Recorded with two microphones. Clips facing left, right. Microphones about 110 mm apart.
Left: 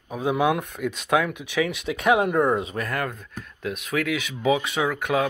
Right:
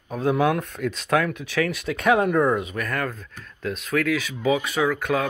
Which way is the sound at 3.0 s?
15° left (ahead or behind).